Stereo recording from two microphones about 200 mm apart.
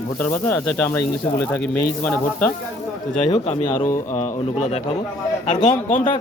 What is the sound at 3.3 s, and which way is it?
Speech, 35° left (ahead or behind).